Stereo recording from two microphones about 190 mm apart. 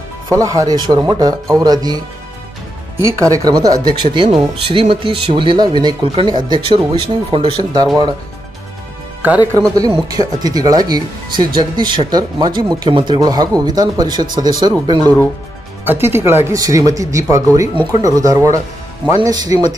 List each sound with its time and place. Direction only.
0.3 s speech: 15° right (ahead or behind)
3.1 s speech: 15° right (ahead or behind)
9.5 s speech: 15° right (ahead or behind)
15.8 s speech: 10° right (ahead or behind)